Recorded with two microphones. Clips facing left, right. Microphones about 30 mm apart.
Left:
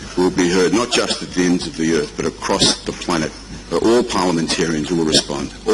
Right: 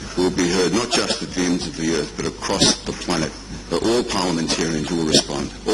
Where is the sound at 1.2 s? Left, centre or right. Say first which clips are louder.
Left 4 dB; centre.